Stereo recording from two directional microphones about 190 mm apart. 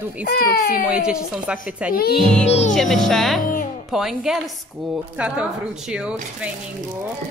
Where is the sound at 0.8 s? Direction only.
5° right (ahead or behind).